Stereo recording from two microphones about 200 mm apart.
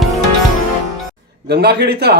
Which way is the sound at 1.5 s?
55° right (ahead or behind).